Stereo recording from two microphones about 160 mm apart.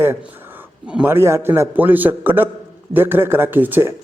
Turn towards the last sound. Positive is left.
turn(degrees=-10)  # may be behind; listen again after turning